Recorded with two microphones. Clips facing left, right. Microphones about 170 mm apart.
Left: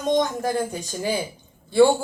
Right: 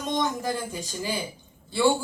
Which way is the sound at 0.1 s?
50° left (ahead or behind).